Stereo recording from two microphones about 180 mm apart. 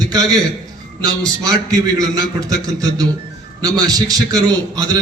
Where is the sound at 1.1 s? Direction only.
20° right (ahead or behind).